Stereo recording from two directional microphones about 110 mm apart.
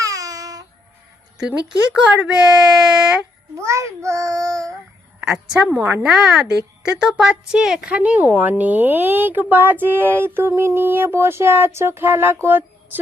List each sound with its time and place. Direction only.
0.0 s a sound: 30° right (ahead or behind)
1.4 s a woman's voice: 10° right (ahead or behind)
3.6 s a child's voice: 30° right (ahead or behind)
5.6 s a woman's voice: 15° right (ahead or behind)